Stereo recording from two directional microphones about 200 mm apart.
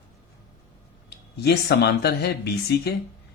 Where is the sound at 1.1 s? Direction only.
55° left (ahead or behind).